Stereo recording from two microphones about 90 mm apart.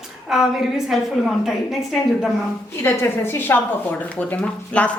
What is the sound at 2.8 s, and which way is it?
A woman's voice, 25° left (ahead or behind).